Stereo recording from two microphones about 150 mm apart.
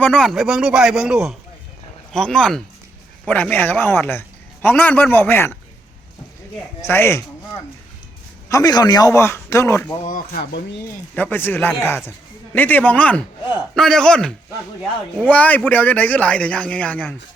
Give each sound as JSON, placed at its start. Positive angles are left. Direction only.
{"t": 0.0, "sound": "a man's voice", "side_deg": 5}
{"t": 6.8, "sound": "a man's voice", "side_deg": 15}
{"t": 8.4, "sound": "a man's voice", "side_deg": 25}
{"t": 10.0, "sound": "speech", "side_deg": 65}
{"t": 11.1, "sound": "a man's voice", "side_deg": 15}